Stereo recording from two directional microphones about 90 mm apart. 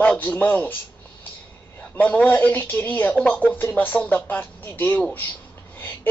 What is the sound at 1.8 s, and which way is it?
A woman's voice, 20° left (ahead or behind).